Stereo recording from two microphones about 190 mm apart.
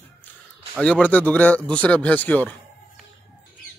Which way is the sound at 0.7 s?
5° left (ahead or behind).